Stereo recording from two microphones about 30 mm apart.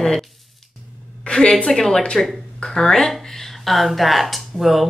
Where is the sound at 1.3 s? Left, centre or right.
Left.